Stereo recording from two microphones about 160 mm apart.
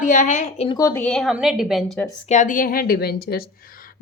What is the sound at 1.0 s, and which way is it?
Speech, 5° left (ahead or behind).